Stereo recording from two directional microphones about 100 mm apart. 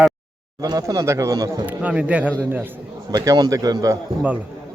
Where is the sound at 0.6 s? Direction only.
35° right (ahead or behind).